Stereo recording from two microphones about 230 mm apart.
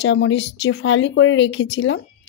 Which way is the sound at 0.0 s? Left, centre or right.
Left.